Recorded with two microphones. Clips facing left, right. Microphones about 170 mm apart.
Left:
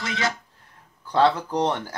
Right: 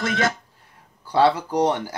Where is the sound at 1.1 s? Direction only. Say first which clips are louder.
Right 2 dB; 10° right (ahead or behind).